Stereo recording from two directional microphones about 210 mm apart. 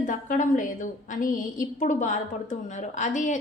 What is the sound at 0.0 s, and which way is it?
A woman's voice, 40° left (ahead or behind).